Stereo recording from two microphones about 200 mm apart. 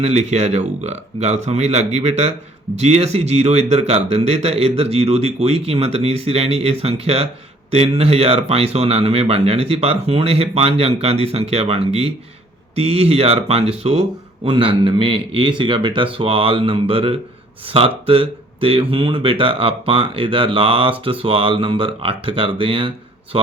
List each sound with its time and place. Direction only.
0.0 s speech: 35° right (ahead or behind)